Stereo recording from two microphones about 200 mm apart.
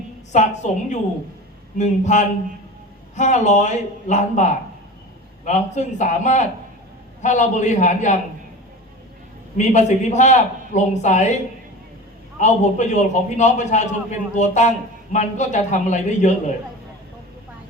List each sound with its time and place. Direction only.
0.3 s a man's voice: 35° left (ahead or behind)
5.5 s a man's voice: 35° left (ahead or behind)
9.6 s a man's voice: 35° left (ahead or behind)
12.4 s a man's voice: 35° left (ahead or behind)